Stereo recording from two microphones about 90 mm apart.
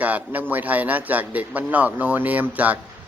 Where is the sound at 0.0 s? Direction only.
20° right (ahead or behind).